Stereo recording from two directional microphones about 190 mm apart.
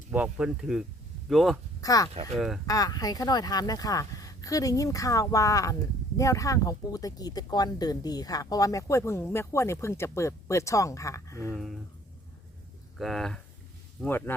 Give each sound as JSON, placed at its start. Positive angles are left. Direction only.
{"t": 0.1, "sound": "speech", "side_deg": -5}
{"t": 1.8, "sound": "speech", "side_deg": 20}
{"t": 11.5, "sound": "speech", "side_deg": 0}
{"t": 13.0, "sound": "speech", "side_deg": 0}